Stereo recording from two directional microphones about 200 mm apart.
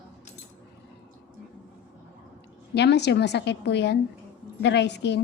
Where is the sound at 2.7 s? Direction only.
60° left (ahead or behind).